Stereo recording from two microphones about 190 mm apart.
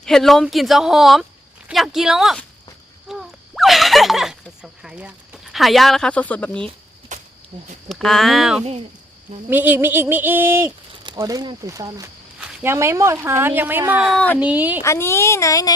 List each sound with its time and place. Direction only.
0.0 s speech: centre (ahead or behind)
7.1 s a sound: 40° right (ahead or behind)
7.5 s speech: 35° right (ahead or behind)
7.9 s speech: centre (ahead or behind)
14.8 s speech: 15° left (ahead or behind)